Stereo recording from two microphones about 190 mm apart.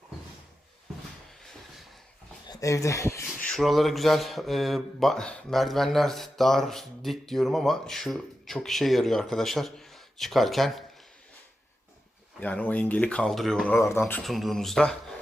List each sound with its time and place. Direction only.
2.5 s speech: 15° left (ahead or behind)
3.2 s speech: centre (ahead or behind)
12.4 s speech: 5° left (ahead or behind)
13.7 s speech: 15° left (ahead or behind)